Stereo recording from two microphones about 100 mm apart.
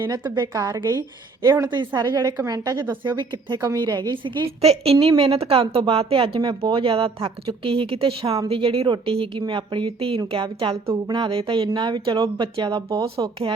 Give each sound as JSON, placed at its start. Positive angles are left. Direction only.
{"t": 0.1, "sound": "a woman's voice", "side_deg": -40}
{"t": 1.7, "sound": "a woman's voice", "side_deg": -50}
{"t": 4.6, "sound": "a woman's voice", "side_deg": -80}
{"t": 10.2, "sound": "a woman's voice", "side_deg": -50}